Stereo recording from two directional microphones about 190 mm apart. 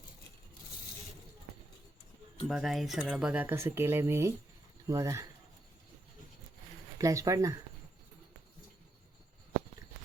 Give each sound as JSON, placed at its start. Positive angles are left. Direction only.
{"t": 2.5, "sound": "speech", "side_deg": 0}
{"t": 7.0, "sound": "speech", "side_deg": -15}